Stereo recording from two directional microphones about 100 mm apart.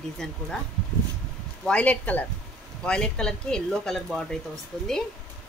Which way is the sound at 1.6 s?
15° left (ahead or behind).